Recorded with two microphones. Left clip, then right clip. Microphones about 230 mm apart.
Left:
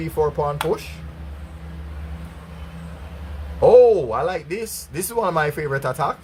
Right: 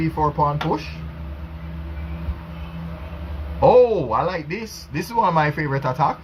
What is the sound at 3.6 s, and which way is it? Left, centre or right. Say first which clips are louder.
Speech: left 2 dB; left.